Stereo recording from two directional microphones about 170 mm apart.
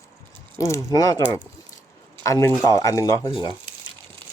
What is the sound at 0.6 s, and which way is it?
Speech, 15° left (ahead or behind).